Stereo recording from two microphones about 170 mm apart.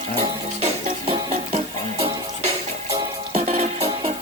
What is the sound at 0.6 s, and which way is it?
Music, 40° right (ahead or behind).